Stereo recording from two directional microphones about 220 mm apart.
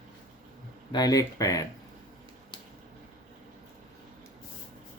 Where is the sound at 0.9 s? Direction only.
15° left (ahead or behind).